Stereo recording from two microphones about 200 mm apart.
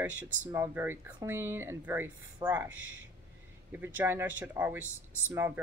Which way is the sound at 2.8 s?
75° right (ahead or behind).